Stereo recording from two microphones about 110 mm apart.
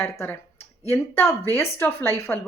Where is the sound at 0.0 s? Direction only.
20° left (ahead or behind).